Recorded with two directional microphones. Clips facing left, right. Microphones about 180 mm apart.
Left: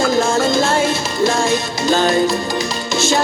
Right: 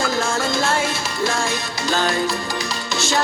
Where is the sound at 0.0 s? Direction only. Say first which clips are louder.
Left 6 dB; 20° left (ahead or behind).